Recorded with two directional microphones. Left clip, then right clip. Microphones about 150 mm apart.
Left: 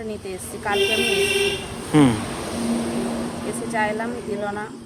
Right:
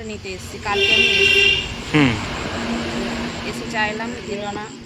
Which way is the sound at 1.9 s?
30° left (ahead or behind).